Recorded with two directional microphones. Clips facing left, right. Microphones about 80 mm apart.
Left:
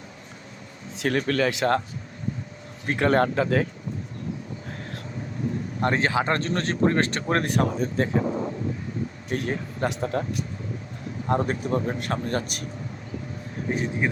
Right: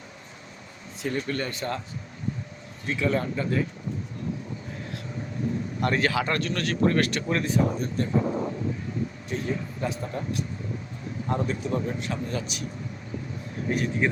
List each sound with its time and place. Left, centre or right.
0.9 s speech: left
2.8 s speech: left
5.8 s speech: left
7.4 s speech: left
9.3 s speech: left
11.3 s speech: left
13.7 s a man's voice: left